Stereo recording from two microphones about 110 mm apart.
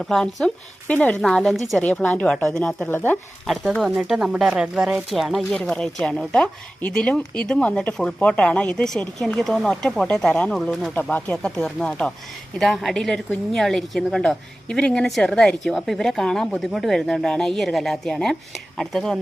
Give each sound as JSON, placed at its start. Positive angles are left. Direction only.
{"t": 0.0, "sound": "a woman's voice", "side_deg": 0}
{"t": 1.8, "sound": "speech", "side_deg": 15}
{"t": 2.9, "sound": "speech", "side_deg": 20}
{"t": 3.4, "sound": "a woman's voice", "side_deg": 0}